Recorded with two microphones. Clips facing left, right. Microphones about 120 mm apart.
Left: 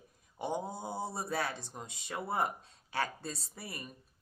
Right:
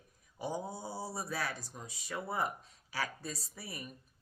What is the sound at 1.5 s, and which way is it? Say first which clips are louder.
Speech: left 1 dB; 25° left (ahead or behind).